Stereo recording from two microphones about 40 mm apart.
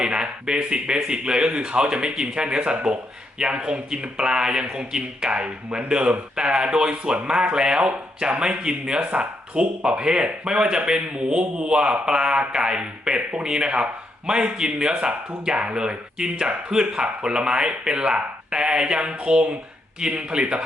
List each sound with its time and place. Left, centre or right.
0.0 s speech: right